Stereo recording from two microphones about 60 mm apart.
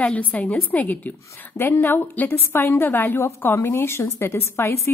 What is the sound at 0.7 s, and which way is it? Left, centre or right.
A woman's voice, left.